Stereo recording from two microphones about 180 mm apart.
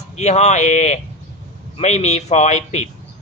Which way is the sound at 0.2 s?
40° left (ahead or behind).